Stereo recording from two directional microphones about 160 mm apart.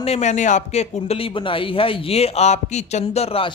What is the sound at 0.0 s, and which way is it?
Speech, 45° left (ahead or behind).